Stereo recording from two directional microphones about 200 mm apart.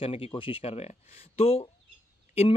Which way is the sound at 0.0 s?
25° left (ahead or behind).